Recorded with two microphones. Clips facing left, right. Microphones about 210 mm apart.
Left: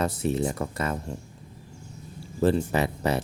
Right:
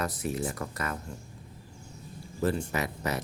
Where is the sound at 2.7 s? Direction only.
30° left (ahead or behind).